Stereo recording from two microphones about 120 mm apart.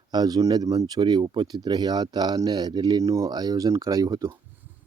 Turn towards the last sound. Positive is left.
turn(degrees=-30)  # may be behind; listen again after turning